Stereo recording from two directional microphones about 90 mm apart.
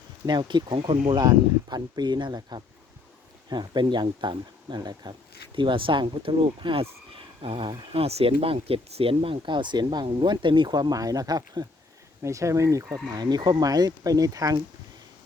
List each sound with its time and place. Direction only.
0.3 s speech: 60° right (ahead or behind); by 1.2 s 85° right
1.2 s speech: 50° right (ahead or behind)
5.5 s speech: 70° right (ahead or behind)
7.1 s speech: 85° right; by 11.7 s 45° right (ahead or behind)
12.2 s speech: 35° right (ahead or behind)
13.1 s speech: 50° right (ahead or behind)